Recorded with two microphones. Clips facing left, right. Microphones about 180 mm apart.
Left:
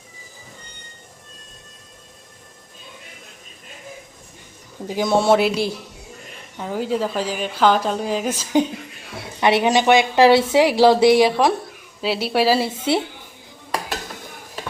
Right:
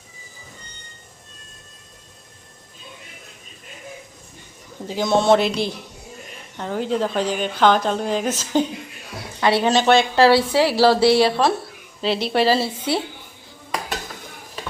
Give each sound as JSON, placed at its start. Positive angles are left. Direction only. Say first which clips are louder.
{"t": 4.9, "sound": "a woman's voice", "louder": "even", "side_deg": 10}